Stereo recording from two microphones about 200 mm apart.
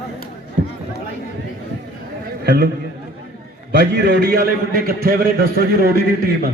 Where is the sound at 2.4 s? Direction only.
55° right (ahead or behind).